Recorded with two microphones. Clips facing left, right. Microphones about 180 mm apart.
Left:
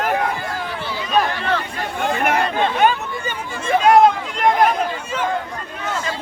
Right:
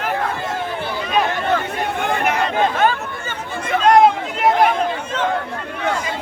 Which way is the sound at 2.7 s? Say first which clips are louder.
Left 1 dB; 15° left (ahead or behind).